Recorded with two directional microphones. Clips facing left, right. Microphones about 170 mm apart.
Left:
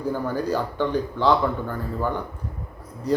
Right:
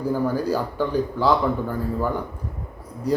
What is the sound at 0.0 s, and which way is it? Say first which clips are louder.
Speech: right 3 dB; 10° right (ahead or behind).